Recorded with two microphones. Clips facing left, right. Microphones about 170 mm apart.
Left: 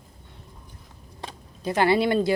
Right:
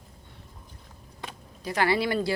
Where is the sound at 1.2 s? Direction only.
25° left (ahead or behind).